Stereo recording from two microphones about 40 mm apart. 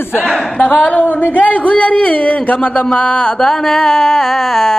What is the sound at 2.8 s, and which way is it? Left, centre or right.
Speech, left.